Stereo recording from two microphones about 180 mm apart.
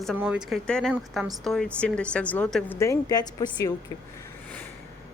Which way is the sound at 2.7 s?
15° left (ahead or behind).